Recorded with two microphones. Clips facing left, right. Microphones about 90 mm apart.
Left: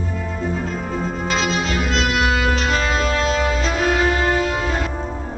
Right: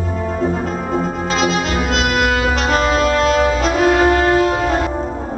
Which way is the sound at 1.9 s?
45° right (ahead or behind).